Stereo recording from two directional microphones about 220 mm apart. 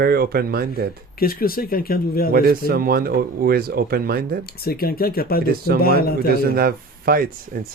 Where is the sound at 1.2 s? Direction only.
40° left (ahead or behind).